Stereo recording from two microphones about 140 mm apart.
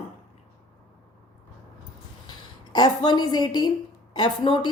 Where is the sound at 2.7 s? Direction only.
30° left (ahead or behind).